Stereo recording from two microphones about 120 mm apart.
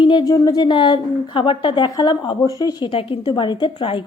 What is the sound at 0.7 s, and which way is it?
Speech, 40° left (ahead or behind).